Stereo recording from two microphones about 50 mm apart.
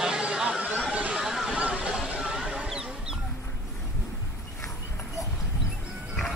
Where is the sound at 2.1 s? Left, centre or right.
Centre.